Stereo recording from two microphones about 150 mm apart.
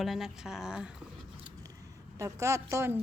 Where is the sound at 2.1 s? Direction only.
20° right (ahead or behind).